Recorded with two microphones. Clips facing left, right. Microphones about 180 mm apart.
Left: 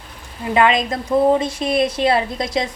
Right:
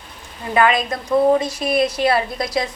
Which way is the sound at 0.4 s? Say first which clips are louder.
Left 1 dB; 20° left (ahead or behind).